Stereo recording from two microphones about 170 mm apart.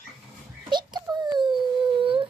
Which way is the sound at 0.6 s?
25° right (ahead or behind).